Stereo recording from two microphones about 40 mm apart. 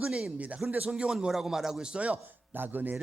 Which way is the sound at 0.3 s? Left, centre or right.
Right.